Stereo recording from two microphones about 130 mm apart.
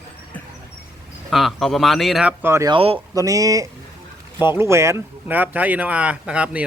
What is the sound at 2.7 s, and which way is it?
Speech, 45° right (ahead or behind).